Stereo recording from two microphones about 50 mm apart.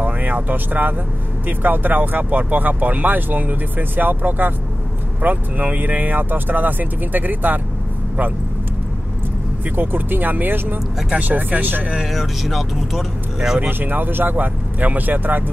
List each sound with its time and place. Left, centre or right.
0.0 s speech: right
9.8 s speech: right
12.0 s speech: centre
13.6 s speech: right